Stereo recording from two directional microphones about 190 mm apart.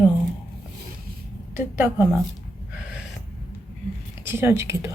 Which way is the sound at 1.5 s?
10° right (ahead or behind).